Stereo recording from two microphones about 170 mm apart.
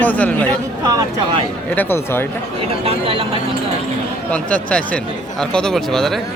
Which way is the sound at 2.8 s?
35° right (ahead or behind).